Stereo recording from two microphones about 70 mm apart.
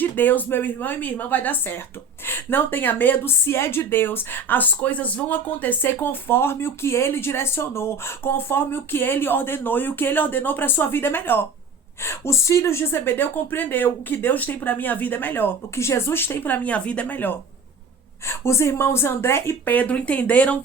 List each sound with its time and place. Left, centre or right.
0.0 s a woman's voice: left
15.7 s speech: left
18.3 s a woman's voice: left
19.7 s speech: left